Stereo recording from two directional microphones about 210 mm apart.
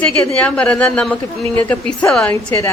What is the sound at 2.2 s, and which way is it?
Speech, 15° left (ahead or behind).